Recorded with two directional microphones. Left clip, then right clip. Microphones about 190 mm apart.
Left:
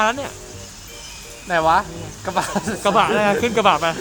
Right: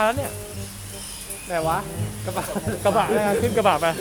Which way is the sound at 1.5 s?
70° left (ahead or behind).